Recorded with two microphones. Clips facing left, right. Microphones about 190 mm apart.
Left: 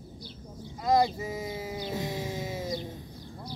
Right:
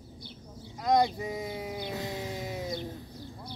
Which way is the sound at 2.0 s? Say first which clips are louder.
Left 2 dB; 20° left (ahead or behind).